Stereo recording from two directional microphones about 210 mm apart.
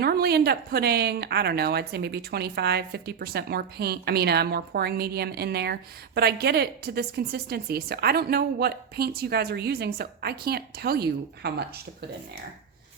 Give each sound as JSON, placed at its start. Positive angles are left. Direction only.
{"t": 0.0, "sound": "speech", "side_deg": -50}